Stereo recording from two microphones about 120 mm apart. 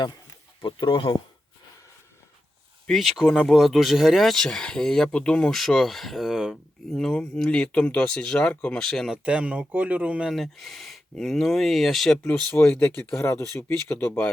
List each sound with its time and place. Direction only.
0.6 s speech: 40° left (ahead or behind)
2.8 s speech: centre (ahead or behind)
9.1 s speech: 10° right (ahead or behind); by 14.3 s 15° left (ahead or behind)